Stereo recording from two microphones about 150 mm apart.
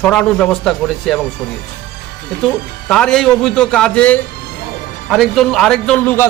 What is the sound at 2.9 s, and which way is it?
A man's voice, 5° left (ahead or behind).